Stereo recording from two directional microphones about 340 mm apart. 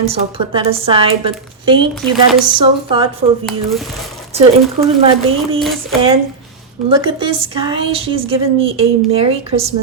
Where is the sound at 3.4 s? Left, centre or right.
Centre.